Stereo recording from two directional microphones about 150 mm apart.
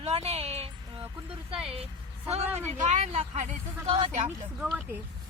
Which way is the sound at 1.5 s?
40° right (ahead or behind).